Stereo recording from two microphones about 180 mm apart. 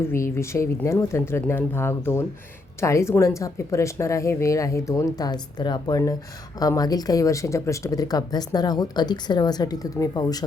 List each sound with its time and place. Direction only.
0.0 s speech: 15° left (ahead or behind)